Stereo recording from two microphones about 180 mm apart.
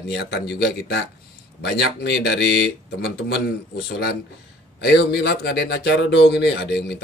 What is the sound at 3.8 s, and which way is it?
Speech, 65° left (ahead or behind).